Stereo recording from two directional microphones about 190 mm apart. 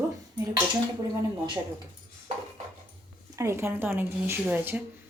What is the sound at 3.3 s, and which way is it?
A woman's voice, 15° right (ahead or behind).